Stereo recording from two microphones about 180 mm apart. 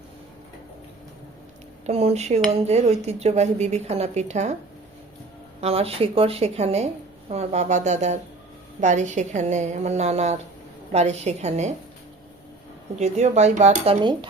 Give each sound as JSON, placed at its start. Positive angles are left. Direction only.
{"t": 1.9, "sound": "speech", "side_deg": -35}
{"t": 5.5, "sound": "speech", "side_deg": -35}
{"t": 13.0, "sound": "speech", "side_deg": -40}